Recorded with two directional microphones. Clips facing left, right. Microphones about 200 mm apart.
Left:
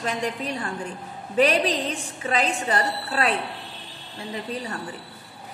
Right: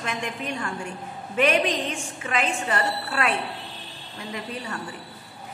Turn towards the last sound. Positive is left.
turn(degrees=35)  # may be behind; listen again after turning